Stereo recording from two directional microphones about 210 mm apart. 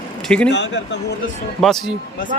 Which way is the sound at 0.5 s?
55° left (ahead or behind).